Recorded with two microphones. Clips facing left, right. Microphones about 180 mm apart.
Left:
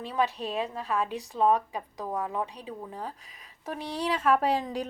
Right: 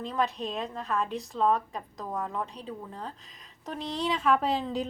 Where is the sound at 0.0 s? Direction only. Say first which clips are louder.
Left 1 dB; 10° left (ahead or behind).